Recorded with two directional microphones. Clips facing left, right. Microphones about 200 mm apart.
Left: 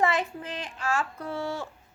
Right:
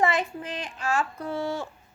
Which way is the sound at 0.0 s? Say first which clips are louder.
Right 1 dB; 15° right (ahead or behind).